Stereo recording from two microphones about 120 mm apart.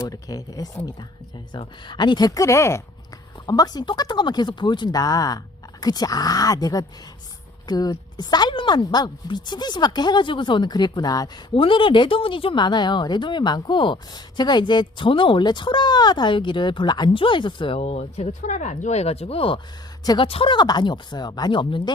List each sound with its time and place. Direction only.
0.0 s a woman's voice: 30° left (ahead or behind)
3.4 s a woman's voice: 35° left (ahead or behind)
11.5 s a woman's voice: 45° left (ahead or behind)